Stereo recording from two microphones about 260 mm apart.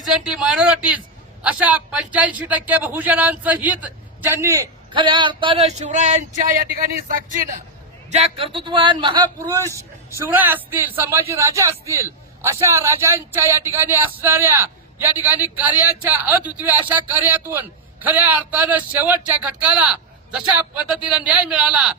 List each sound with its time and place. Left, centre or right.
0.0 s a man's voice: centre; by 6.8 s right
8.1 s a man's voice: right; by 21.9 s centre